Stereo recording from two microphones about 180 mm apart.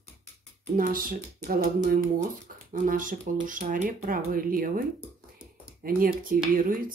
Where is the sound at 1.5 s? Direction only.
50° right (ahead or behind).